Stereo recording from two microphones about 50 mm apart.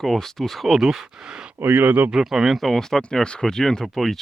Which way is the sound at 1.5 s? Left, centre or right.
Right.